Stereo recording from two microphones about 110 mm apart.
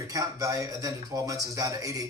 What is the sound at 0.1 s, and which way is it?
Speech, 35° right (ahead or behind).